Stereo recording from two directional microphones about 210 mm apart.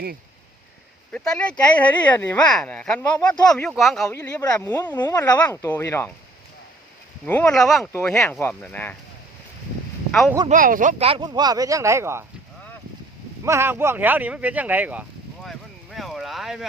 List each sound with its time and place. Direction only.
1.1 s speech: 5° left (ahead or behind)
7.3 s speech: 10° left (ahead or behind)
10.1 s speech: centre (ahead or behind)
10.5 s speech: 40° right (ahead or behind); by 12.2 s 15° right (ahead or behind)
13.4 s speech: 10° right (ahead or behind)
15.4 s a sound: centre (ahead or behind)